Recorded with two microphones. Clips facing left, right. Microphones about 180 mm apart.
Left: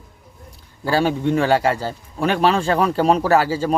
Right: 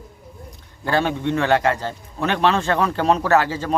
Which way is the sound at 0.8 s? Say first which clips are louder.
Left 2 dB; 10° left (ahead or behind).